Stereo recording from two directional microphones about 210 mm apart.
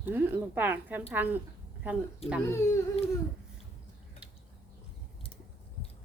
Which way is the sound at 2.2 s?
30° left (ahead or behind).